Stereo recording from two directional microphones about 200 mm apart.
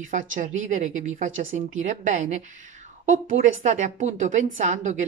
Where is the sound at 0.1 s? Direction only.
40° right (ahead or behind).